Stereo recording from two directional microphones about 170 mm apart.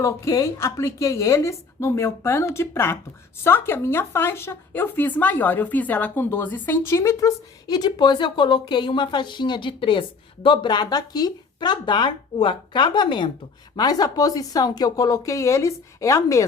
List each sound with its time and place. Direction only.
0.0 s a woman's voice: 15° left (ahead or behind)